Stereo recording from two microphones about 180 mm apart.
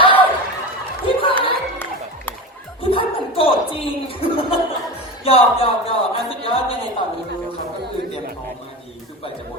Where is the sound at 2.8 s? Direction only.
30° left (ahead or behind).